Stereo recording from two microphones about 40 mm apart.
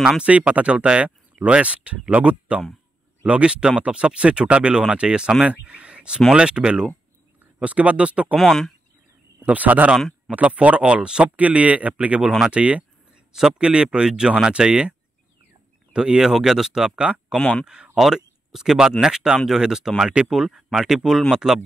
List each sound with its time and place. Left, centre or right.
0.2 s speech: right
7.5 s speech: right
8.4 s speech: centre
9.5 s speech: right
9.9 s speech: centre
10.3 s speech: right
11.3 s speech: right
16.2 s speech: centre
17.4 s speech: left
17.9 s speech: centre